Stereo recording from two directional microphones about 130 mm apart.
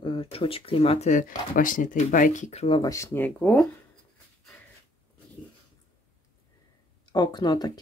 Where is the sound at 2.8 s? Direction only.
25° left (ahead or behind).